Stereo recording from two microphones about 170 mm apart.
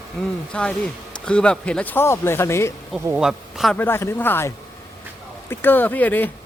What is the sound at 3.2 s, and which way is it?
Speech, 5° right (ahead or behind).